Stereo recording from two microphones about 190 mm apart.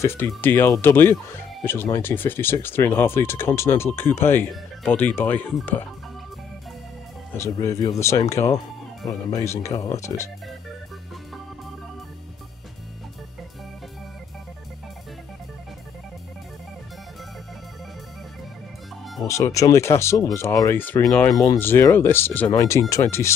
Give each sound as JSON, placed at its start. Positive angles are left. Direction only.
{"t": 0.0, "sound": "speech", "side_deg": 15}
{"t": 7.3, "sound": "speech", "side_deg": 15}
{"t": 19.2, "sound": "speech", "side_deg": 15}